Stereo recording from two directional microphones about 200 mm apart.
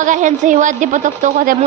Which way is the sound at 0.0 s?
40° right (ahead or behind).